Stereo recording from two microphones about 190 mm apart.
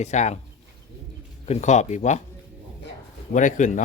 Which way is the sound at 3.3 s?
40° left (ahead or behind).